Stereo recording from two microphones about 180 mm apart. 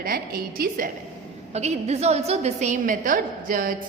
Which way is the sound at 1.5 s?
35° right (ahead or behind).